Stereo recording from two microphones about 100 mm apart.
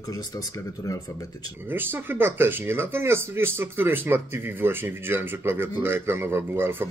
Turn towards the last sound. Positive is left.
turn(degrees=-25)  # may be behind; listen again after turning